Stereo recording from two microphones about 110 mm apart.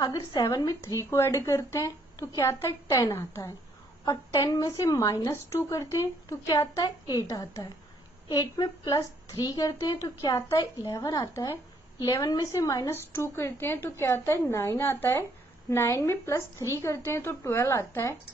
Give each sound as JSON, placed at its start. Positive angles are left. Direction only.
{"t": 0.0, "sound": "a woman's voice", "side_deg": 35}